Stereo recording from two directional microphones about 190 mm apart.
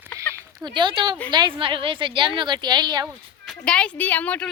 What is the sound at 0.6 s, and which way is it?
A woman's voice, 25° right (ahead or behind).